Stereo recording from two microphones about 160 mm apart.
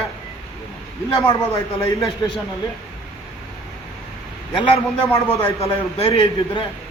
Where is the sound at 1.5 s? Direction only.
20° left (ahead or behind).